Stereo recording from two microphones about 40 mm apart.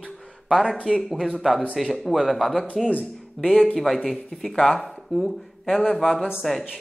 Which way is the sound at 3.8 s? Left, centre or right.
Centre.